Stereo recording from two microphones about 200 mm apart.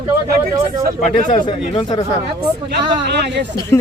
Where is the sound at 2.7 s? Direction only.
60° right (ahead or behind).